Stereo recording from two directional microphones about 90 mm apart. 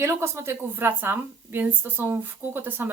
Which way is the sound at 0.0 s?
30° right (ahead or behind).